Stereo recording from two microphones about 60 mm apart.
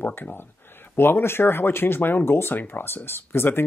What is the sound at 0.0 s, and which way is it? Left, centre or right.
Speech, left.